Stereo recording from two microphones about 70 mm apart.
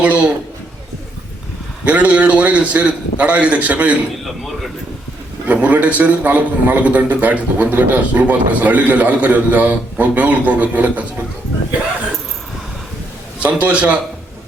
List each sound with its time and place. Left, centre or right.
0.0 s a man's voice: centre
1.8 s a man's voice: centre
5.5 s a man's voice: right
13.4 s a man's voice: right